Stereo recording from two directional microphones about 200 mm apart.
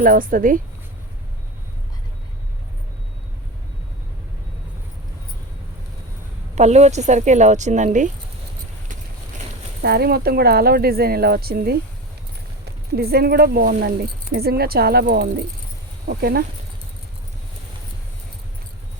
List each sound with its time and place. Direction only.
0.0 s speech: 45° right (ahead or behind)
6.6 s a woman's voice: 35° right (ahead or behind)
9.8 s speech: 50° right (ahead or behind)